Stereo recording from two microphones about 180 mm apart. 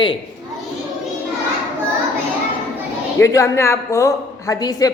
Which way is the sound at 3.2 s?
15° left (ahead or behind).